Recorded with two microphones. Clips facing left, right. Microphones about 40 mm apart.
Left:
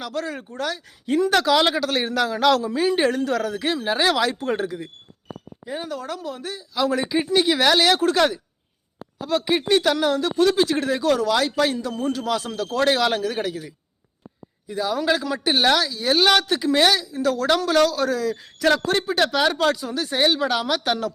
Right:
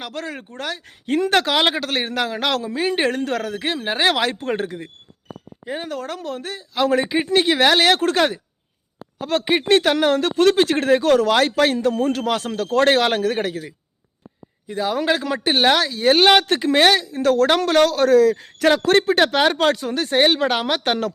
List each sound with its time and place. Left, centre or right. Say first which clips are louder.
0.0 s speech: left 1 dB; right
19.2 s speech: right 3 dB; right